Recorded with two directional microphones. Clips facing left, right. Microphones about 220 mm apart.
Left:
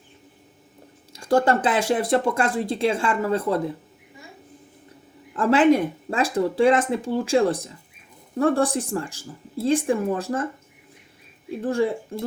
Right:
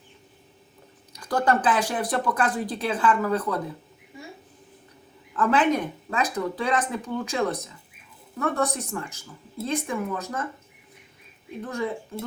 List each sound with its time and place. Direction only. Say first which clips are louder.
1.1 s speech: left 4 dB; 25° left (ahead or behind)
5.3 s speech: left 5 dB; 30° left (ahead or behind)
11.6 s speech: left 8 dB; 30° left (ahead or behind)